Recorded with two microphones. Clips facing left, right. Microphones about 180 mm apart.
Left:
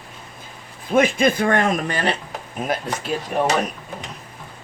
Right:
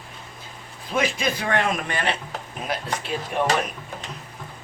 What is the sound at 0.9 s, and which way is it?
Speech, 50° left (ahead or behind).